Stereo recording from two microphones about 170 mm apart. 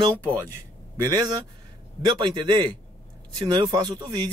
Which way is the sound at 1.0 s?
25° right (ahead or behind).